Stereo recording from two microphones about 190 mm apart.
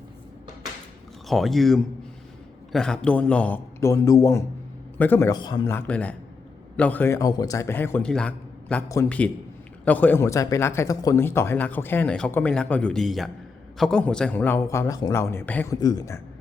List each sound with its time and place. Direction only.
1.3 s a man's voice: centre (ahead or behind); by 16.2 s 15° left (ahead or behind)